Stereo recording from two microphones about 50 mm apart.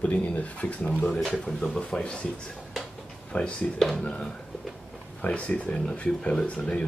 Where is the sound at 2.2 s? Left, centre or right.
Centre.